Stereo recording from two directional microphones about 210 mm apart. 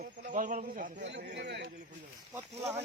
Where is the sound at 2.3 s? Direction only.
15° right (ahead or behind).